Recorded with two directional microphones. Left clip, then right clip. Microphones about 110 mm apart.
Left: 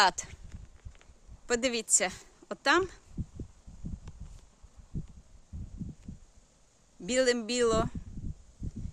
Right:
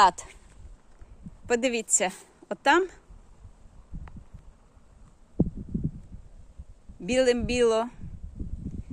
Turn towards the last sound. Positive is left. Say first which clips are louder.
# right 4 dB
turn(degrees=0)  # may be behind; listen again after turning